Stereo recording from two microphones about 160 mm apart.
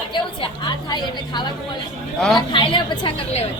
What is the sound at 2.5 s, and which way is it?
Speech, 30° left (ahead or behind).